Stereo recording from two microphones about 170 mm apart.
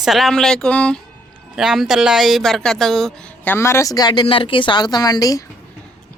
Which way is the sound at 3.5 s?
15° left (ahead or behind).